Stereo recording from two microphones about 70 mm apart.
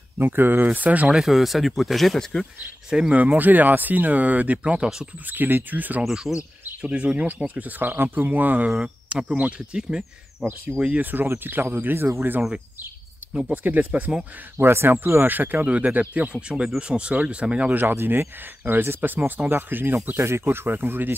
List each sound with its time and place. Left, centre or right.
0.2 s speech: right
1.1 s speech: centre
2.9 s speech: centre
3.2 s speech: right
6.0 s speech: centre
6.9 s speech: centre
8.7 s speech: centre; by 12.4 s right
13.5 s speech: right
14.6 s speech: right; by 17.8 s centre
17.8 s speech: right